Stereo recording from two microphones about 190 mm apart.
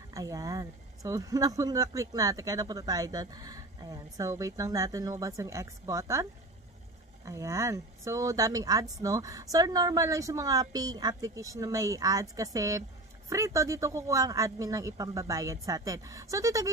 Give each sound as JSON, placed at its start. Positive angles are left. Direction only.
{"t": 0.1, "sound": "speech", "side_deg": -20}
{"t": 7.2, "sound": "speech", "side_deg": -15}